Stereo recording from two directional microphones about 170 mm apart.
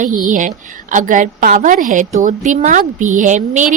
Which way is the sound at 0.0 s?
50° right (ahead or behind).